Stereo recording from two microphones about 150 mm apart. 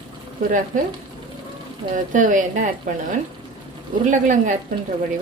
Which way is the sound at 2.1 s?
60° right (ahead or behind).